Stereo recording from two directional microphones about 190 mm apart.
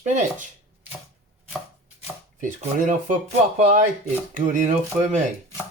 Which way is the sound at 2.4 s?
40° right (ahead or behind).